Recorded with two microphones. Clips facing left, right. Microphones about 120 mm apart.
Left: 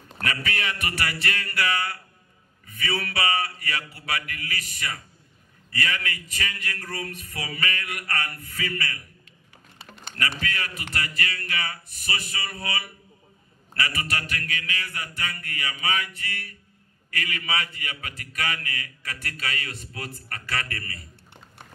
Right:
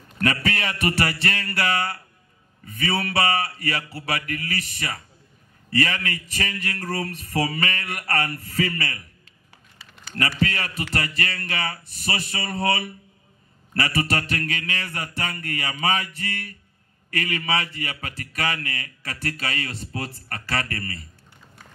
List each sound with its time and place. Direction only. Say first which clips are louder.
0.2 s a man's voice: right 5 dB; 35° right (ahead or behind)
10.4 s a man's voice: right 6 dB; 35° right (ahead or behind)